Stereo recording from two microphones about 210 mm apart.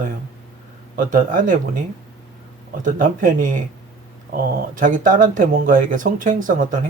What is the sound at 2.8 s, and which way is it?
Speech, 40° right (ahead or behind).